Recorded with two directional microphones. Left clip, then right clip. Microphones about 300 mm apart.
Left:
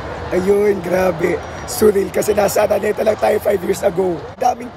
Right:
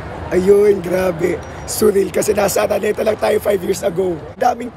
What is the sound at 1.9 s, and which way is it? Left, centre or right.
Speech, left.